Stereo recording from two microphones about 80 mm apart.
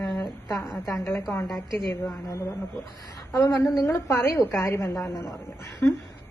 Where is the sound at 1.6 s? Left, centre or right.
Left.